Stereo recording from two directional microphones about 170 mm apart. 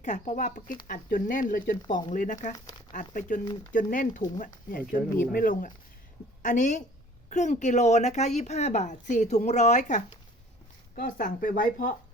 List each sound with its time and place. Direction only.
0.0 s a woman's voice: 45° left (ahead or behind)